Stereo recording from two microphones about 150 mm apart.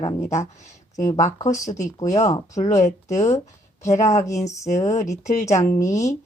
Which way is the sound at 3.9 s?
50° left (ahead or behind).